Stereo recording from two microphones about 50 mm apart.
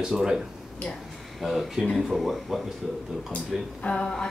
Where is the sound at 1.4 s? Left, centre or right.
Centre.